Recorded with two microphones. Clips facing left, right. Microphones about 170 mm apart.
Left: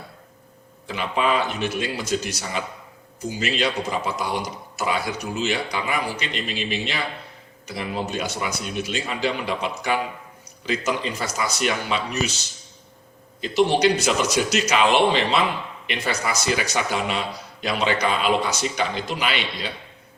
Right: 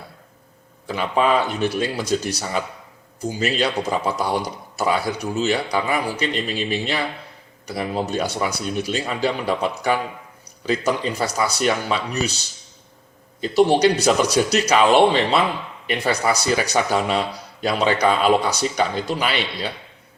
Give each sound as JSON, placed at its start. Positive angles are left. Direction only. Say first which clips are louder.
{"t": 0.9, "sound": "speech", "louder": "right 4 dB", "side_deg": -40}
{"t": 13.4, "sound": "speech", "louder": "right 3 dB", "side_deg": -35}